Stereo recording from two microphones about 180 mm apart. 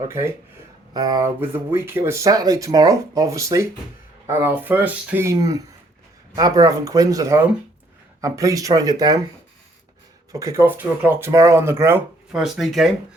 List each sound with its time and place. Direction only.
0.0 s speech: 15° right (ahead or behind)
10.3 s speech: 15° right (ahead or behind)
12.3 s speech: centre (ahead or behind)